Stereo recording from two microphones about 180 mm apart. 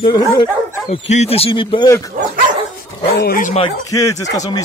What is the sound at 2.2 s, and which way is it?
Speech, 55° right (ahead or behind).